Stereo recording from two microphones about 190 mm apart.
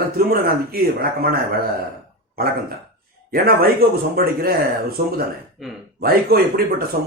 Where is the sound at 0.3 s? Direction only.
55° right (ahead or behind).